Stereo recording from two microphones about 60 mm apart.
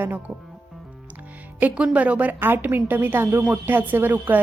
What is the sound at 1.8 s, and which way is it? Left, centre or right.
A woman's voice, right.